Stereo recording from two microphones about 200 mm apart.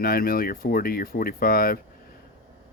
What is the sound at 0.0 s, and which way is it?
Speech, 45° left (ahead or behind).